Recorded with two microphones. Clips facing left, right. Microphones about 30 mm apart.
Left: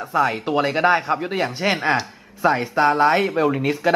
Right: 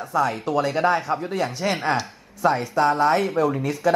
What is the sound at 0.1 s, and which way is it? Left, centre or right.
Speech, left.